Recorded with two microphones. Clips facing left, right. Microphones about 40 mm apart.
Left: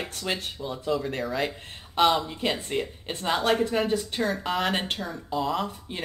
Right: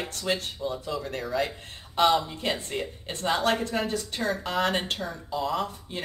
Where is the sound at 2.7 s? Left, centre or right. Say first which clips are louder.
Left 3 dB; centre.